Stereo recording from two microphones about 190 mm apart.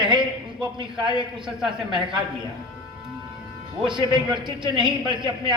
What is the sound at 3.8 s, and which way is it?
A man's voice, 25° right (ahead or behind).